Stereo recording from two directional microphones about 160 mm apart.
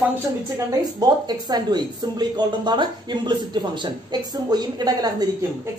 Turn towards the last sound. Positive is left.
turn(degrees=-25)  # may be behind; listen again after turning